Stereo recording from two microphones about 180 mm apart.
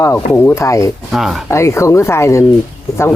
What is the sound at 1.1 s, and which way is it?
Speech, centre (ahead or behind).